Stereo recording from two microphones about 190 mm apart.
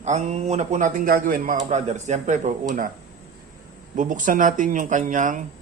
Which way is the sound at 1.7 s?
40° right (ahead or behind).